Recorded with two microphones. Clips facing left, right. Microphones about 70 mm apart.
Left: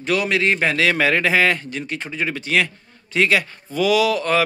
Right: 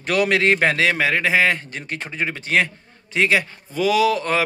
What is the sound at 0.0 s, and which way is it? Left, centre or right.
Speech, right.